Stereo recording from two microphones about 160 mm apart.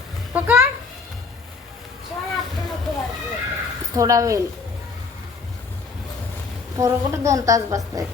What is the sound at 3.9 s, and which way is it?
Speech, 20° right (ahead or behind).